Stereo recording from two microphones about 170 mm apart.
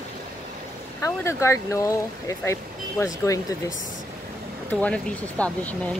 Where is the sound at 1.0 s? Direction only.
15° left (ahead or behind).